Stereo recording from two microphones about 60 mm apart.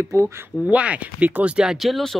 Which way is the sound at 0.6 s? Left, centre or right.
Right.